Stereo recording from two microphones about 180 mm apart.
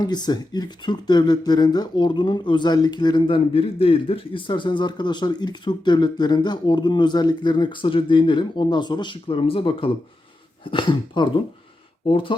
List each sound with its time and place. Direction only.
0.0 s speech: 25° left (ahead or behind)